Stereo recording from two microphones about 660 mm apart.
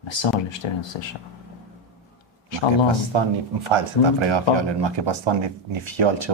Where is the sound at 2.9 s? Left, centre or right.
Right.